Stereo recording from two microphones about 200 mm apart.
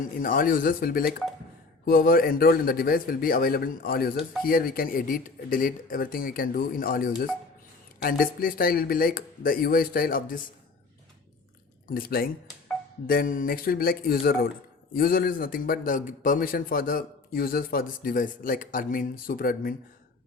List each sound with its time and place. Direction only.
0.0 s a man's voice: 45° left (ahead or behind)
11.9 s a man's voice: 50° left (ahead or behind)